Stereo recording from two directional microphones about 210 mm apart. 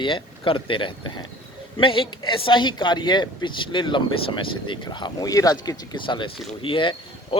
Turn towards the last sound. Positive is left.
turn(degrees=25)  # may be behind; listen again after turning